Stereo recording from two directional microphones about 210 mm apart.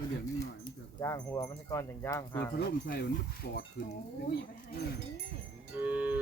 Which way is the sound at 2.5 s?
50° left (ahead or behind).